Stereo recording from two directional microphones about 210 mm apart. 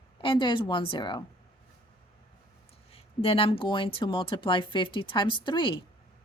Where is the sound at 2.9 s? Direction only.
25° left (ahead or behind).